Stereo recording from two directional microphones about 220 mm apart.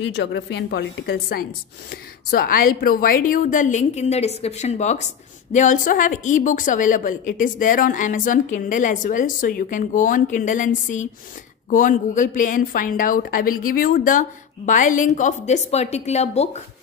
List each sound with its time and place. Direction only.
0.1 s speech: 55° left (ahead or behind); by 16.6 s 30° left (ahead or behind)